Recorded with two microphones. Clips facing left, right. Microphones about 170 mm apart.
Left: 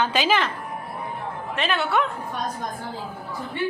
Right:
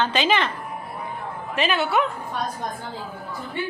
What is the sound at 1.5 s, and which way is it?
Speech, centre (ahead or behind).